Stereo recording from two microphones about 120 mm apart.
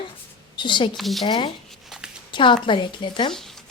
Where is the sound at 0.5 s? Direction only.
40° left (ahead or behind).